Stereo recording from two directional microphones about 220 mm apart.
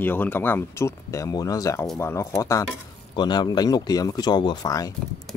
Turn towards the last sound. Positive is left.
turn(degrees=15)  # may be behind; listen again after turning